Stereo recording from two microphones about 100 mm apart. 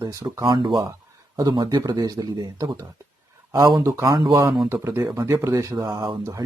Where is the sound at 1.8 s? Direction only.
40° right (ahead or behind).